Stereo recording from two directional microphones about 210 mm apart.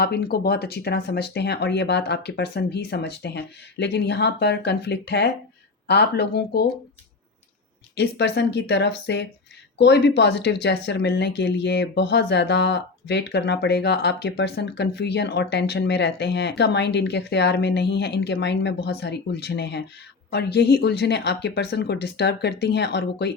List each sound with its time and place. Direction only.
0.0 s speech: 50° left (ahead or behind)
7.9 s speech: 55° left (ahead or behind)